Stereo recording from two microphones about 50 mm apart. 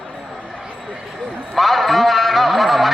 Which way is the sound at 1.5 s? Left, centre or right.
Centre.